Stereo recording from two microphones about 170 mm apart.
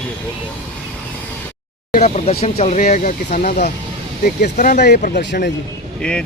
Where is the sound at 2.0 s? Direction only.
40° left (ahead or behind); by 5.3 s 75° left (ahead or behind).